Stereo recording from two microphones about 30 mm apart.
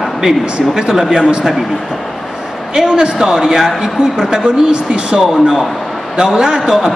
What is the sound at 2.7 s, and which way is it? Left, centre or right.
Speech, right.